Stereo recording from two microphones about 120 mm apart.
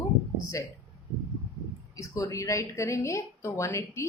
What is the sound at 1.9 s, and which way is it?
A woman's voice, 25° left (ahead or behind).